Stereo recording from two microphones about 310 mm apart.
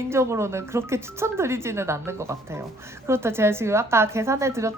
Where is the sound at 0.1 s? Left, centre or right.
Centre.